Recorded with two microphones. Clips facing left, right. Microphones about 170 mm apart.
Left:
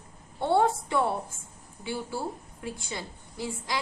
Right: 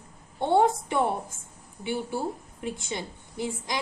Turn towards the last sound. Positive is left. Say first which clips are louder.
# right 3 dB
turn(degrees=-20)  # may be behind; listen again after turning